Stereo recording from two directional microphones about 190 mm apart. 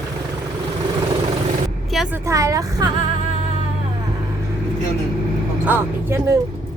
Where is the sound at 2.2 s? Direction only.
15° right (ahead or behind).